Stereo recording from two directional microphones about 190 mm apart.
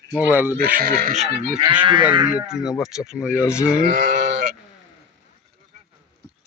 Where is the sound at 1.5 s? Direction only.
25° right (ahead or behind).